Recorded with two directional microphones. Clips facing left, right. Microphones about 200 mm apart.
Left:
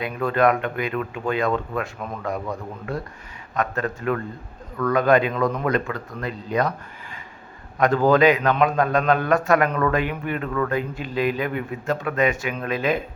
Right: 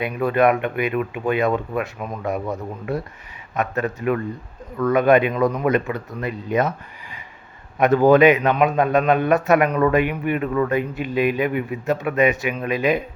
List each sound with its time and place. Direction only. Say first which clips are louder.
0.0 s speech: right 2 dB; 20° right (ahead or behind)